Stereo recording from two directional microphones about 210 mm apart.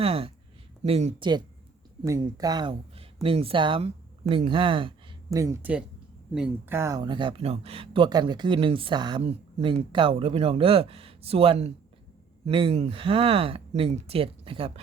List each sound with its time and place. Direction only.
0.0 s a woman's voice: 25° right (ahead or behind)